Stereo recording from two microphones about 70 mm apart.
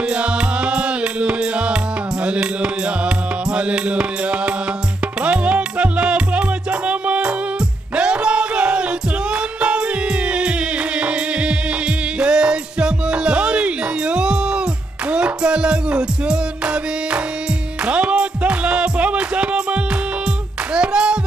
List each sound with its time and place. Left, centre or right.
0.1 s music: centre